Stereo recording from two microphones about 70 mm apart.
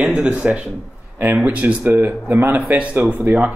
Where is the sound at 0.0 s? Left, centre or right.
Centre.